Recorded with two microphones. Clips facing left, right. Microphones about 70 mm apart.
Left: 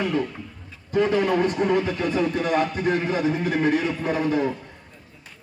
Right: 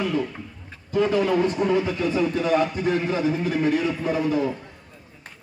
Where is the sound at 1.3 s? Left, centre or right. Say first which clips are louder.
Even; left.